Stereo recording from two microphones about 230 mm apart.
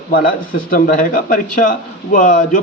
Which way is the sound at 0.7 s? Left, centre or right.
Left.